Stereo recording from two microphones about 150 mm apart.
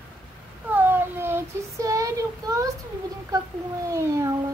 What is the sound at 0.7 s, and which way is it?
Child singing, 15° right (ahead or behind).